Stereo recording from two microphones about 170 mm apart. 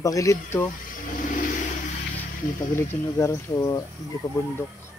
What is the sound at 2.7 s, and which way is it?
Speech, 15° left (ahead or behind).